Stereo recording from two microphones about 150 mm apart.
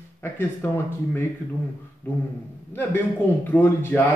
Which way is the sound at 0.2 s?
15° left (ahead or behind).